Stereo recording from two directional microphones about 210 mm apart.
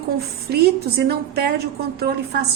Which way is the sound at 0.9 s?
50° right (ahead or behind).